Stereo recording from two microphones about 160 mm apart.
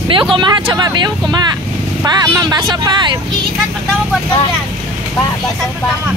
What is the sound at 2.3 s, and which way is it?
Speech, 20° right (ahead or behind).